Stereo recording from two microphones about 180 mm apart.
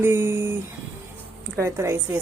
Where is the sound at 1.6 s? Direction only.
15° right (ahead or behind).